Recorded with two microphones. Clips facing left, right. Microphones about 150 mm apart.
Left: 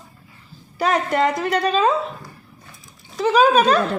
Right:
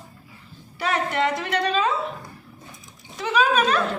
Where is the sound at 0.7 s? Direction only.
40° left (ahead or behind).